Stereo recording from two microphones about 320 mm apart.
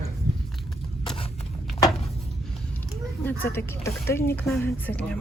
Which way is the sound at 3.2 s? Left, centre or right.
Centre.